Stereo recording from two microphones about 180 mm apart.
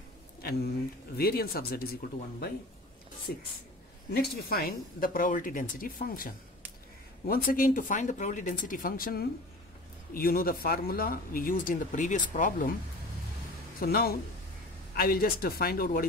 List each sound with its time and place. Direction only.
0.4 s a sound: 60° left (ahead or behind)
1.1 s speech: 60° left (ahead or behind)
3.3 s speech: 55° left (ahead or behind)
13.7 s speech: 60° left (ahead or behind)